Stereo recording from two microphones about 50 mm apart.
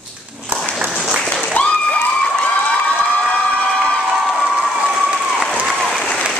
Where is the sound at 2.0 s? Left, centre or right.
Centre.